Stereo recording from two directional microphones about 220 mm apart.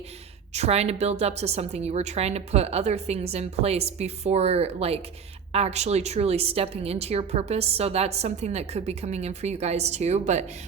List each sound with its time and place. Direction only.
0.5 s a woman's voice: 30° right (ahead or behind)